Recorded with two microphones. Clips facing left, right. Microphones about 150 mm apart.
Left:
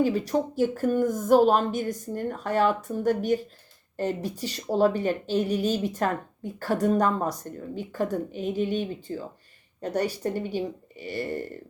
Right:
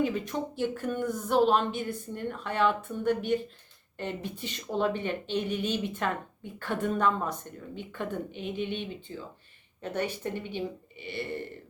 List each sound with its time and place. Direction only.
0.0 s speech: 35° left (ahead or behind)